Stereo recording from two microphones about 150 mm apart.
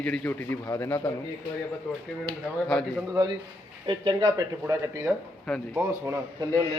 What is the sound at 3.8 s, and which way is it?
Speech, 35° right (ahead or behind).